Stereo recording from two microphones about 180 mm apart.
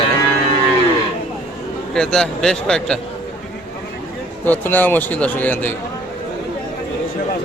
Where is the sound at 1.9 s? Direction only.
5° left (ahead or behind).